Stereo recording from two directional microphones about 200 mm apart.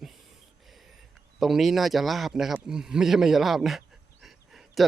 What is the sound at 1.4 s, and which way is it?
A man's voice, centre (ahead or behind).